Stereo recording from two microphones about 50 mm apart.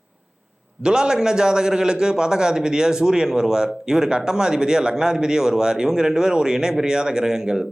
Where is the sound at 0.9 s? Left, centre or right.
Centre.